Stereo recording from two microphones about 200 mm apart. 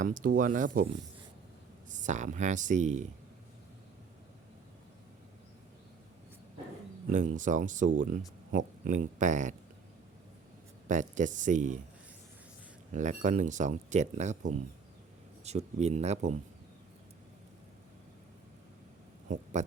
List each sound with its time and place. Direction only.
0.0 s speech: 45° right (ahead or behind)
1.9 s speech: 40° right (ahead or behind)
7.1 s speech: 40° right (ahead or behind)
10.8 s speech: 40° right (ahead or behind)
12.9 s speech: 40° right (ahead or behind)
19.3 s speech: 35° right (ahead or behind)